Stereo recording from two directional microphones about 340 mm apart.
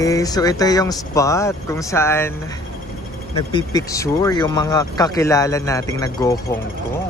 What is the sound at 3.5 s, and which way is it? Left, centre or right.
Speech, centre.